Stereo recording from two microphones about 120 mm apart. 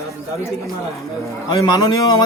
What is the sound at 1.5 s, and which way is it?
Speech, 30° left (ahead or behind).